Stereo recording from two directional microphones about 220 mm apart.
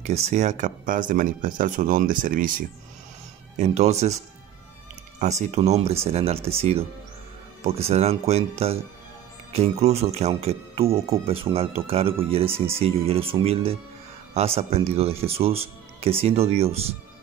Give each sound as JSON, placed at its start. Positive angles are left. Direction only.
{"t": 0.0, "sound": "speech", "side_deg": -30}
{"t": 5.2, "sound": "speech", "side_deg": -30}